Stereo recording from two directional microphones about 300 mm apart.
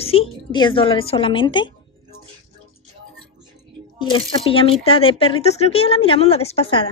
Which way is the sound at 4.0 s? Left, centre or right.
Centre.